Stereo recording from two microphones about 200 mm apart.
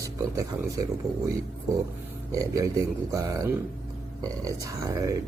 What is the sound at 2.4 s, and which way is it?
Speech, 15° right (ahead or behind).